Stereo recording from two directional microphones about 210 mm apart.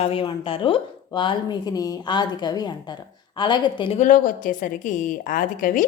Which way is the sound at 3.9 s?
40° left (ahead or behind).